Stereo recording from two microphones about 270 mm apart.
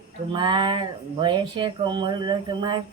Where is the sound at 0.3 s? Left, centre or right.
Centre.